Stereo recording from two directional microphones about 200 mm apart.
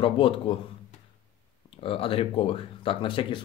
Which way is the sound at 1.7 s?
25° left (ahead or behind).